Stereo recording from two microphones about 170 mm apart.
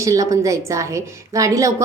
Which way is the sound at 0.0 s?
20° right (ahead or behind).